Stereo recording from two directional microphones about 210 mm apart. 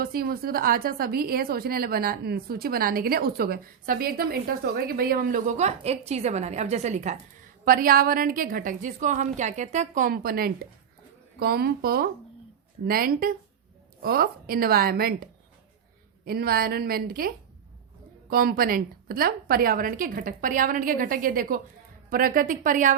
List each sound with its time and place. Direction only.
0.0 s a woman's voice: 45° right (ahead or behind)
16.2 s a woman's voice: 45° right (ahead or behind)